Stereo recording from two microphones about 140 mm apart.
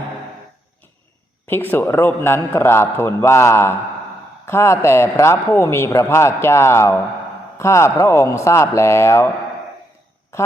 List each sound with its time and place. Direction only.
1.5 s a man's voice: 15° left (ahead or behind)